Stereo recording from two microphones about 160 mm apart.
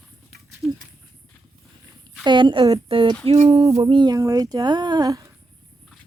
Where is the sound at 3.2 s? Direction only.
40° right (ahead or behind).